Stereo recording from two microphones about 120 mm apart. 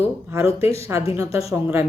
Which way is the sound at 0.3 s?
20° right (ahead or behind).